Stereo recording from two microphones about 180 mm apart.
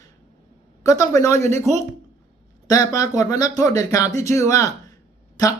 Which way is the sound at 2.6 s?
20° left (ahead or behind).